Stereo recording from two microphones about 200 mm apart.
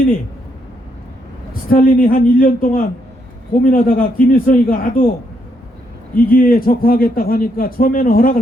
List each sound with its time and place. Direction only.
1.7 s a man's voice: 45° left (ahead or behind)
6.1 s a man's voice: 45° left (ahead or behind)